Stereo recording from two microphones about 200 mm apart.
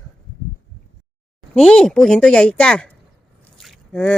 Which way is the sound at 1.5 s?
5° left (ahead or behind).